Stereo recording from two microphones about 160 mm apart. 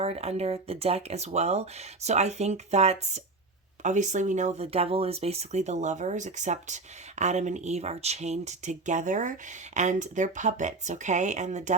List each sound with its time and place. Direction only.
0.0 s speech: 40° right (ahead or behind)